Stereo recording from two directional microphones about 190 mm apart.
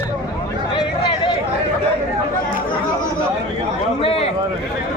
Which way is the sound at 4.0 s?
30° left (ahead or behind).